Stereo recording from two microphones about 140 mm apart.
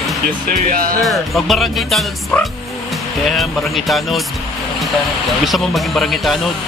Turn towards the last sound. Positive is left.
turn(degrees=0)  # may be behind; listen again after turning